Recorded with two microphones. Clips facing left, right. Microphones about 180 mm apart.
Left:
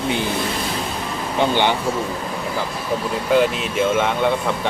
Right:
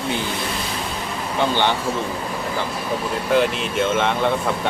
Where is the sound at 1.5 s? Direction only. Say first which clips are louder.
Left 2 dB; 15° left (ahead or behind).